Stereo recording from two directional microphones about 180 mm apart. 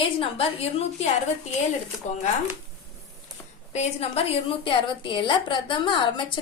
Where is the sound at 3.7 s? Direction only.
35° left (ahead or behind).